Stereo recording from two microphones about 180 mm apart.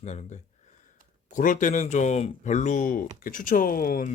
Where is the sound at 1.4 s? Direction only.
45° left (ahead or behind).